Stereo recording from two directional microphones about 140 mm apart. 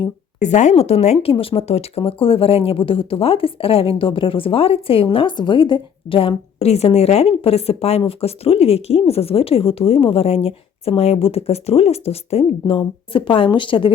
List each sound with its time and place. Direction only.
0.3 s speech: 60° left (ahead or behind); by 13.9 s 35° left (ahead or behind)